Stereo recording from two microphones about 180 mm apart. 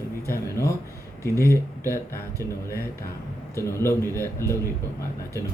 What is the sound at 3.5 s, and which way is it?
Speech, 15° left (ahead or behind).